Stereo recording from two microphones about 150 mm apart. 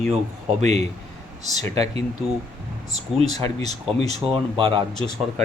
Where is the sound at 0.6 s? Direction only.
45° right (ahead or behind).